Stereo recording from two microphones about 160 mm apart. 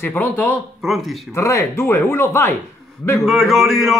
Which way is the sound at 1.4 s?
20° left (ahead or behind).